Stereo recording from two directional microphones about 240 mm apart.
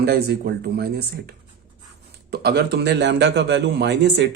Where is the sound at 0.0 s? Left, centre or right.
Right.